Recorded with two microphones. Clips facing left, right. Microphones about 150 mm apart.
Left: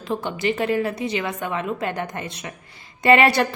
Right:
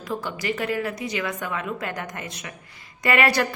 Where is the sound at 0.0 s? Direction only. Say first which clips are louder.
Left 5 dB; 25° left (ahead or behind).